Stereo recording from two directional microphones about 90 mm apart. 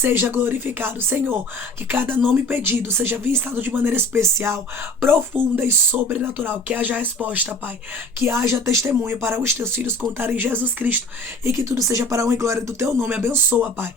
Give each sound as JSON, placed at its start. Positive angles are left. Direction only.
{"t": 0.0, "sound": "speech", "side_deg": -25}
{"t": 8.2, "sound": "speech", "side_deg": -30}